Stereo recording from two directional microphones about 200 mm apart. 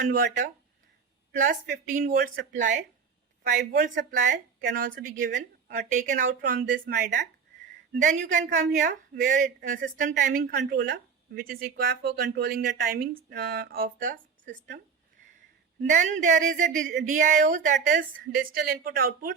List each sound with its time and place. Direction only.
0.1 s a woman's voice: 45° right (ahead or behind)
2.1 s a woman's voice: 55° right (ahead or behind)
3.8 s a woman's voice: 40° right (ahead or behind)
15.8 s a woman's voice: 40° right (ahead or behind)